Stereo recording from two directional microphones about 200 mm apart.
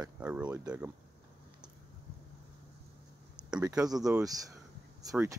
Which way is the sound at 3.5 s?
5° right (ahead or behind).